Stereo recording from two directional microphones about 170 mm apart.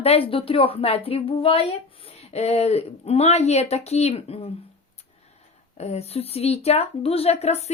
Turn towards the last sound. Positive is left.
turn(degrees=40)  # may be behind; listen again after turning